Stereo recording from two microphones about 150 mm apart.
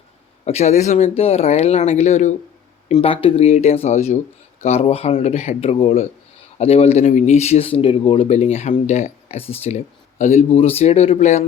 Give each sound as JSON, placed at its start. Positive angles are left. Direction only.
{"t": 0.4, "sound": "speech", "side_deg": 45}
{"t": 2.9, "sound": "speech", "side_deg": 40}